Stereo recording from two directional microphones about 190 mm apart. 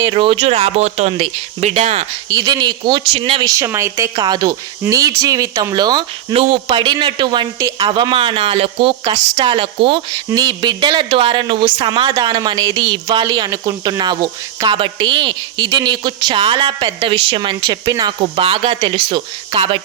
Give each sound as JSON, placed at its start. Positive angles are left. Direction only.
{"t": 0.0, "sound": "speech", "side_deg": -25}
{"t": 2.3, "sound": "speech", "side_deg": -20}
{"t": 3.5, "sound": "speech", "side_deg": -15}